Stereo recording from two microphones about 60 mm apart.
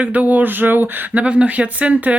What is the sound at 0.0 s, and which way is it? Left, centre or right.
Speech, right.